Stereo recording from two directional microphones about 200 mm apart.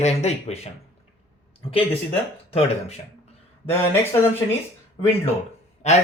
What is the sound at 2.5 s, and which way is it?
Speech, 30° left (ahead or behind).